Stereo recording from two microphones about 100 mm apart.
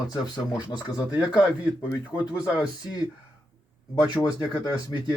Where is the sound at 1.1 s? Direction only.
15° right (ahead or behind).